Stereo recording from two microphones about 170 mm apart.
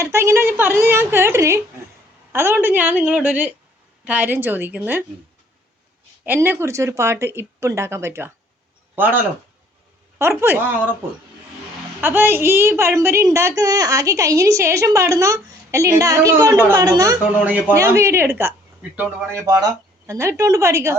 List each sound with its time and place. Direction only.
0.0 s a woman's voice: 15° right (ahead or behind)
6.2 s a woman's voice: 10° right (ahead or behind)
11.9 s a woman's voice: 15° right (ahead or behind)
17.4 s a woman's voice: 10° right (ahead or behind)
19.5 s a woman's voice: 20° right (ahead or behind)